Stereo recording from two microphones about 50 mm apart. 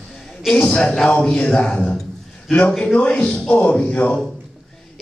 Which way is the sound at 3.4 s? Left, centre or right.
Left.